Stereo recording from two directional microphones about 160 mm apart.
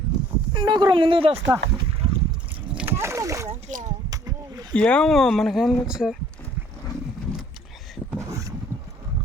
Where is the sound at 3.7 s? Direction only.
55° right (ahead or behind).